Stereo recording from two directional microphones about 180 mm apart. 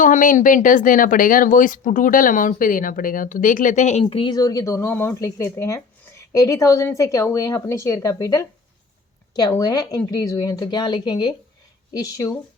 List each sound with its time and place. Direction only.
0.0 s speech: 45° left (ahead or behind)
4.0 s speech: 25° left (ahead or behind)
9.5 s speech: 20° left (ahead or behind)